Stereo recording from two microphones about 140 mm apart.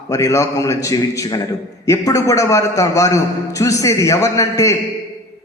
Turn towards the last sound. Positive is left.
turn(degrees=25)  # may be behind; listen again after turning